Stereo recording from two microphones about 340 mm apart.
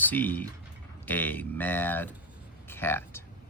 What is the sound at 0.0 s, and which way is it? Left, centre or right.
Speech, centre.